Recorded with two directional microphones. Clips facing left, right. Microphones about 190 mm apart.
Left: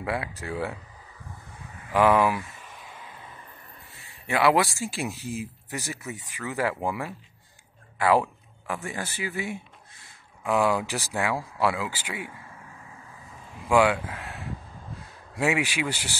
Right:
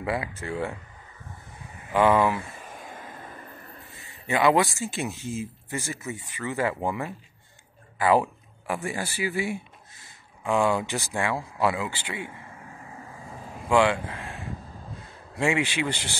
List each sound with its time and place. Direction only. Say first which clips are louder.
0.0 s speech: right 1 dB; centre (ahead or behind)
2.0 s speech: even; 5° left (ahead or behind)
2.4 s a sound: right 5 dB; 45° right (ahead or behind)
4.3 s speech: right 1 dB; 5° left (ahead or behind)
8.6 s speech: right 3 dB; 10° right (ahead or behind)
10.4 s speech: even; 5° left (ahead or behind)
13.7 s speech: even; 10° left (ahead or behind)